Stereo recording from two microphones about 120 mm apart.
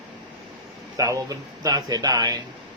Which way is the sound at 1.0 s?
30° right (ahead or behind).